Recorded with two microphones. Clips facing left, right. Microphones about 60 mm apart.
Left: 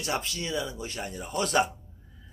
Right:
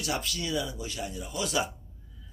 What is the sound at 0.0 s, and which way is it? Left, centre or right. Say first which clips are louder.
A man's voice: left 1 dB; left.